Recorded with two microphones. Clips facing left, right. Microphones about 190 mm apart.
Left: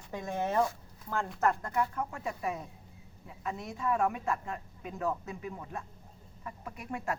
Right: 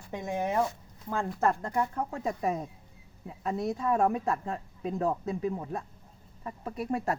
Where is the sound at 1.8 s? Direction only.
30° right (ahead or behind).